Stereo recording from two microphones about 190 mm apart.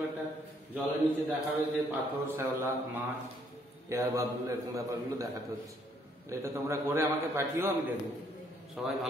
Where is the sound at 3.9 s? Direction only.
15° right (ahead or behind).